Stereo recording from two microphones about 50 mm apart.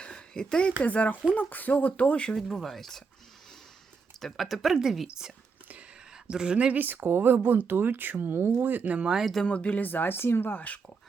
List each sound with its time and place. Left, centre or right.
0.0 s a sound: centre
0.8 s speech: left
2.3 s speech: centre
4.4 s speech: centre
6.3 s speech: centre
6.7 s speech: right
9.0 s speech: centre
9.5 s speech: left